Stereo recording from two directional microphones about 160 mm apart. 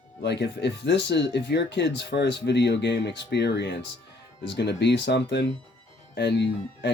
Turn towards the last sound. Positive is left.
turn(degrees=90)